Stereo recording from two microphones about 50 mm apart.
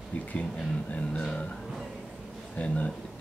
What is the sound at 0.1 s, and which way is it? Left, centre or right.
Speech, left.